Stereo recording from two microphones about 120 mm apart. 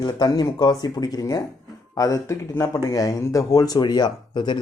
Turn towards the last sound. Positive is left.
turn(degrees=40)  # may be behind; listen again after turning